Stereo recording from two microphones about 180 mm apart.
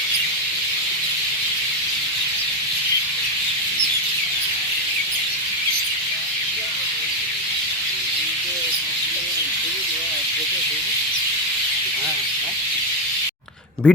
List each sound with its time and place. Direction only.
13.9 s speech: 10° left (ahead or behind)